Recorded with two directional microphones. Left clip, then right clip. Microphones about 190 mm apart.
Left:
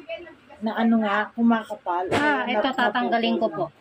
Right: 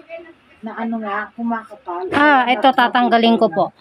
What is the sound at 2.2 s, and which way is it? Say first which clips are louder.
Speech: right 14 dB; 65° right (ahead or behind).